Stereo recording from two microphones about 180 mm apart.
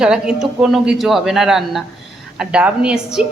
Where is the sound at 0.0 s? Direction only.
5° right (ahead or behind).